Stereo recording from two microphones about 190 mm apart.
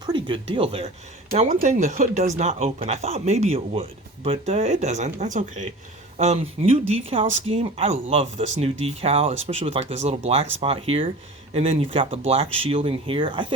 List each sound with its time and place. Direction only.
0.0 s speech: 25° right (ahead or behind)